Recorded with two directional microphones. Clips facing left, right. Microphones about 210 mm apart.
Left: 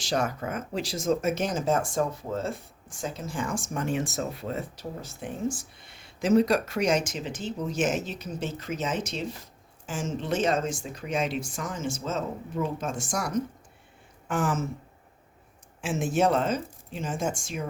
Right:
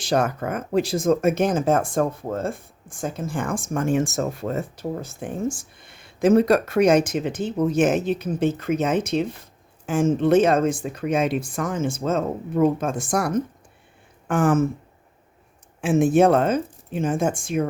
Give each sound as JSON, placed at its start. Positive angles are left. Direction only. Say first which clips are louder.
{"t": 0.0, "sound": "speech", "louder": "right 6 dB", "side_deg": -55}
{"t": 15.8, "sound": "speech", "louder": "right 8 dB", "side_deg": -55}